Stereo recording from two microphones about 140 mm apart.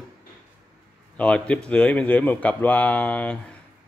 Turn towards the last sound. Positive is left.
turn(degrees=10)  # may be behind; listen again after turning